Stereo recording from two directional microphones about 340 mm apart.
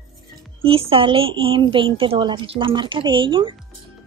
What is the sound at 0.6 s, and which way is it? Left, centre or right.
A woman's voice, centre.